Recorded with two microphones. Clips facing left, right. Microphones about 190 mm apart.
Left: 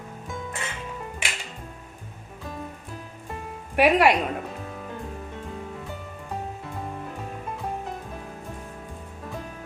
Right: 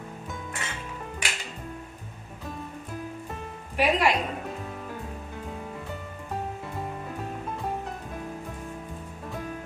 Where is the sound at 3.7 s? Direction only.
65° left (ahead or behind).